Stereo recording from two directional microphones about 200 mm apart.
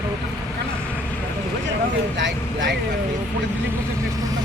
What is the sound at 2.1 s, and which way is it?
Speech, 65° right (ahead or behind).